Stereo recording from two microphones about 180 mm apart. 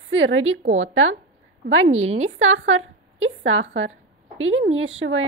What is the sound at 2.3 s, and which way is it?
A woman's voice, 90° right.